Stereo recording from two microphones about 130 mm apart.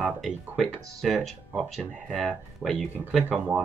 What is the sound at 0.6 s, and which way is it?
Speech, centre (ahead or behind).